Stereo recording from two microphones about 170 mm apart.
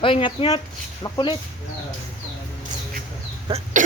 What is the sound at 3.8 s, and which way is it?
Cough, 50° right (ahead or behind).